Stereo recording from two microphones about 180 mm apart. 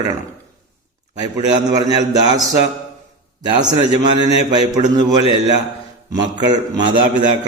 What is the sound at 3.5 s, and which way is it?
A man's voice, 25° right (ahead or behind).